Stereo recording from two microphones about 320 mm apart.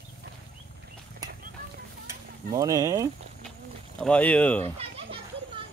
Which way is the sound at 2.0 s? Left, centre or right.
Centre.